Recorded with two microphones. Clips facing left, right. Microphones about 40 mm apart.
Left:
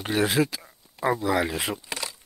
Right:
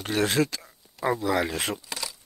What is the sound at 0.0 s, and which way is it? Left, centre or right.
Speech, centre.